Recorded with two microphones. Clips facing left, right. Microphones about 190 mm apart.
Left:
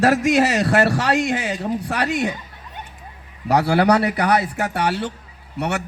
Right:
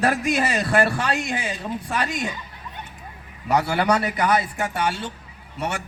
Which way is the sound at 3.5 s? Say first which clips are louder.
Left 4 dB; 70° left (ahead or behind).